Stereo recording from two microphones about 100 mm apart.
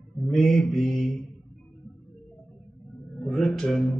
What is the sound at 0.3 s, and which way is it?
Mantra, centre (ahead or behind).